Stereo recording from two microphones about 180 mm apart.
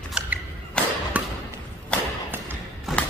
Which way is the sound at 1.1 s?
10° right (ahead or behind).